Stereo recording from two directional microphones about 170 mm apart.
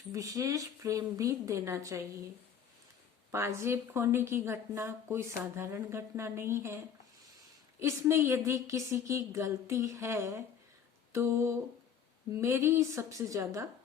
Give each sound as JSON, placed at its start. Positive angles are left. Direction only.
{"t": 0.1, "sound": "speech", "side_deg": -20}
{"t": 3.3, "sound": "speech", "side_deg": -15}